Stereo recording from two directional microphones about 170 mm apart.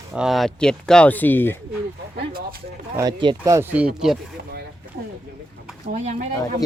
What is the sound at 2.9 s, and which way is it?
Speech, 25° right (ahead or behind).